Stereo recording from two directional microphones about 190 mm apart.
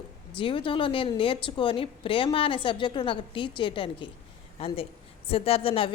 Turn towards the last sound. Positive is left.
turn(degrees=30)  # may be behind; listen again after turning